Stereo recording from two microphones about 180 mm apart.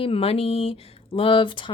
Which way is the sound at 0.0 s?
30° left (ahead or behind).